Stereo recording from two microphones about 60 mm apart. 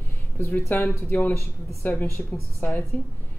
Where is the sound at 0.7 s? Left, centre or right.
Left.